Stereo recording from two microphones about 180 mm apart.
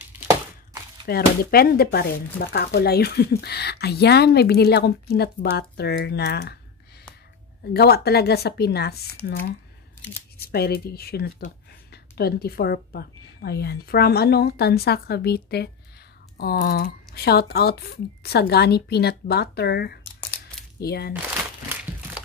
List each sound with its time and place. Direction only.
1.0 s speech: 55° left (ahead or behind)
7.7 s speech: 60° left (ahead or behind)
10.3 s speech: 60° left (ahead or behind)